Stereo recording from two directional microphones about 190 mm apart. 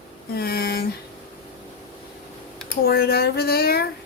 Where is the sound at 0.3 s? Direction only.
55° left (ahead or behind).